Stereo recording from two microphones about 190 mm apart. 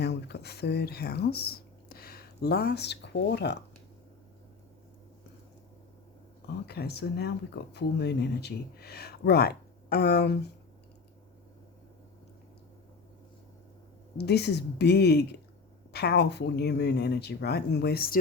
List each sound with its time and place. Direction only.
0.0 s speech: 60° left (ahead or behind)
6.7 s speech: 55° left (ahead or behind)
14.2 s speech: 60° left (ahead or behind)